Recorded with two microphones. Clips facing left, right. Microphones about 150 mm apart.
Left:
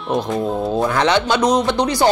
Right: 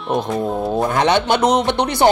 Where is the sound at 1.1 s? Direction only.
55° right (ahead or behind).